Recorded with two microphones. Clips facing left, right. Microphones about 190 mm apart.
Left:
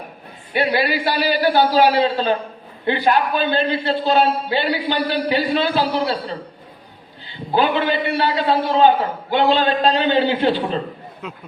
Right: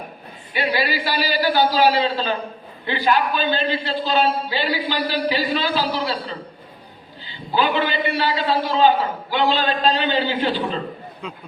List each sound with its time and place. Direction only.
0.5 s a man's voice: 60° left (ahead or behind)
7.5 s a man's voice: 55° left (ahead or behind)